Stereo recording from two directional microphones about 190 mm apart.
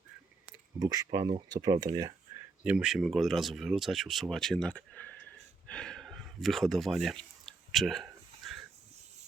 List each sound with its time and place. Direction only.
0.8 s speech: 20° right (ahead or behind)
2.6 s speech: 5° right (ahead or behind)
7.4 s a sound: centre (ahead or behind)